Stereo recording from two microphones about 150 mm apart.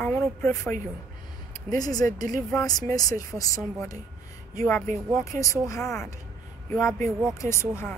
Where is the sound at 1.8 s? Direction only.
25° left (ahead or behind).